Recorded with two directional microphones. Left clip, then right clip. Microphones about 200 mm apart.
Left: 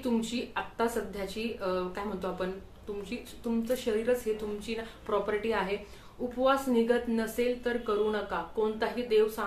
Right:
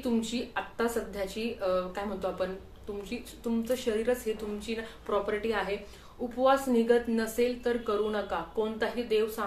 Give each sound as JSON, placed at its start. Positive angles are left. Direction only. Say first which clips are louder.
{"t": 0.0, "sound": "a woman's voice", "louder": "even", "side_deg": 0}